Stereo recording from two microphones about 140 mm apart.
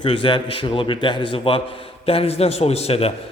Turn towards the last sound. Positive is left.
turn(degrees=45)  # may be behind; listen again after turning